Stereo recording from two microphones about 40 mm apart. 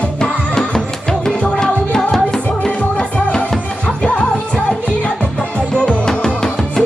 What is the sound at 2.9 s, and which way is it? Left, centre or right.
Music, left.